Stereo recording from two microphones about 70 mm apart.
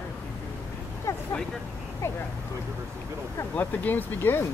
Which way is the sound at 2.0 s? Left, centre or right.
Left.